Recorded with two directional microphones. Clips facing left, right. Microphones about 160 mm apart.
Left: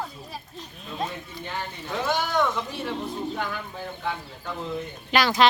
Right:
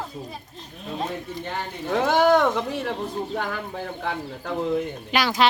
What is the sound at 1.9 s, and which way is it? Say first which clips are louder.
A man's voice: right 9 dB; 75° right (ahead or behind).